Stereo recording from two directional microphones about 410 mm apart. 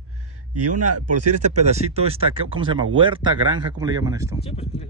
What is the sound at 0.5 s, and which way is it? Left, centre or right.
Speech, right.